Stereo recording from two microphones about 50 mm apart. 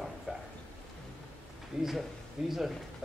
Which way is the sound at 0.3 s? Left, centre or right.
Right.